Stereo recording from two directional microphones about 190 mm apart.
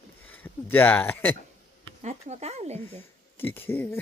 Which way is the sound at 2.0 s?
35° right (ahead or behind).